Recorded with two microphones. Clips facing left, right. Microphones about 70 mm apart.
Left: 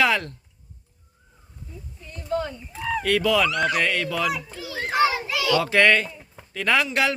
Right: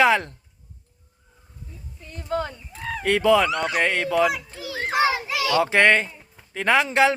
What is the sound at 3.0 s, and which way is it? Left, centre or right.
Speech, right.